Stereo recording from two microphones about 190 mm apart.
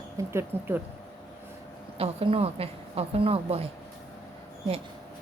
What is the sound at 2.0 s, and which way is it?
A woman's voice, 30° right (ahead or behind).